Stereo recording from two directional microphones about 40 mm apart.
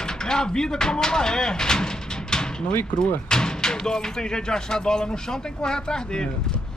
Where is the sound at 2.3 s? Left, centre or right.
Centre.